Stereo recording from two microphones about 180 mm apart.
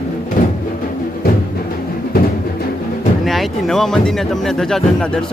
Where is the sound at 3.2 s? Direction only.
Centre (ahead or behind).